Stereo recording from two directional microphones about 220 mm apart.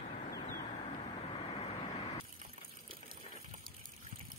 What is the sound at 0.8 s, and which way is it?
Vehicle, 25° left (ahead or behind).